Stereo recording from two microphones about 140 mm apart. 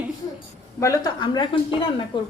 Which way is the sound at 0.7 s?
20° left (ahead or behind).